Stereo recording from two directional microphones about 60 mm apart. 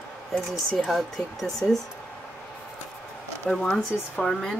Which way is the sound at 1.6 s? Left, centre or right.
Left.